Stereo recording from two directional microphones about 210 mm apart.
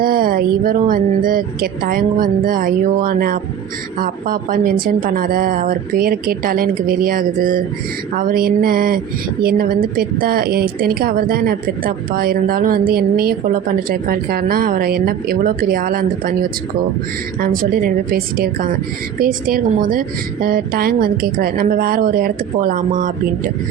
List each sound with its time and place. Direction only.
0.0 s speech: 40° right (ahead or behind)
17.4 s speech: 40° right (ahead or behind)